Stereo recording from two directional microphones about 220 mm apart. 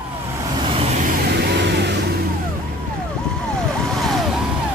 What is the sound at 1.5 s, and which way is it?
Vehicle, 50° right (ahead or behind).